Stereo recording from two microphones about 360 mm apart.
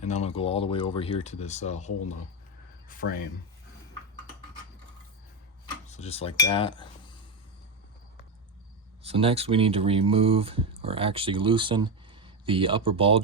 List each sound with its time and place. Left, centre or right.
0.0 s speech: centre
2.9 s speech: left
5.9 s cutlery: centre
9.0 s speech: centre